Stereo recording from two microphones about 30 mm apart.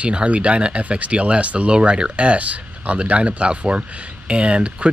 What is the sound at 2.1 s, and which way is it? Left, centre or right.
Speech, right.